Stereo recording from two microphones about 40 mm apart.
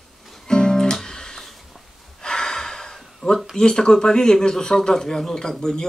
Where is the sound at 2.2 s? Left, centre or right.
Centre.